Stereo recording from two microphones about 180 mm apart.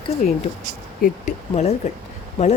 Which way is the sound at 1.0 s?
40° left (ahead or behind).